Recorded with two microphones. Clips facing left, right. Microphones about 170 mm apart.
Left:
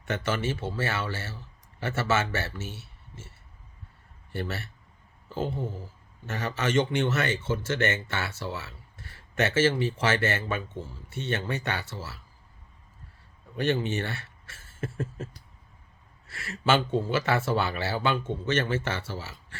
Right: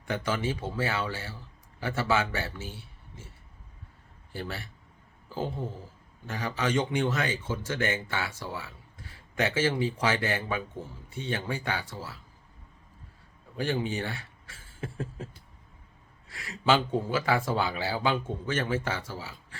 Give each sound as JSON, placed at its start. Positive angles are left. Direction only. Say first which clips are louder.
{"t": 0.1, "sound": "speech", "louder": "left 1 dB", "side_deg": -15}
{"t": 6.2, "sound": "speech", "louder": "left 1 dB", "side_deg": -10}
{"t": 13.7, "sound": "speech", "louder": "left 1 dB", "side_deg": -10}
{"t": 14.5, "sound": "a sound", "louder": "right 1 dB", "side_deg": 80}
{"t": 14.8, "sound": "speech", "louder": "left 3 dB", "side_deg": -15}